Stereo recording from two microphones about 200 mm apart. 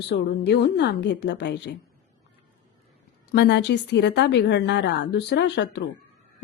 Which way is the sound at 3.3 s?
60° left (ahead or behind).